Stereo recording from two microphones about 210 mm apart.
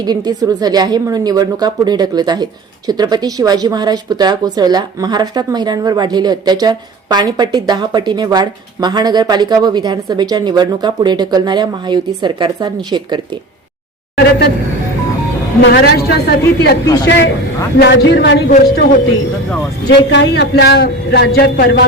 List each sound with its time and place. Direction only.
0.0 s a woman's voice: 20° right (ahead or behind)
15.6 s a man's voice: 50° left (ahead or behind)
16.4 s speech: 15° left (ahead or behind)
17.7 s speech: 60° left (ahead or behind)
19.9 s a man's voice: 60° left (ahead or behind)